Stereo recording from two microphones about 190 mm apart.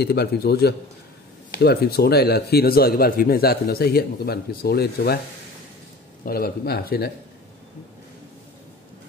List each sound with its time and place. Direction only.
0.0 s a man's voice: 55° left (ahead or behind)
6.2 s speech: 55° left (ahead or behind)